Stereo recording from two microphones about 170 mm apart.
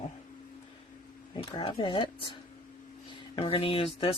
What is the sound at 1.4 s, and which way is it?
Speech, 30° left (ahead or behind).